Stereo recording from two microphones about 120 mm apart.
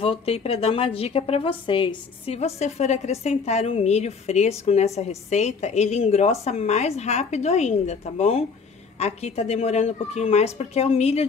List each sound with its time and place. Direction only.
0.0 s a woman's voice: 50° left (ahead or behind)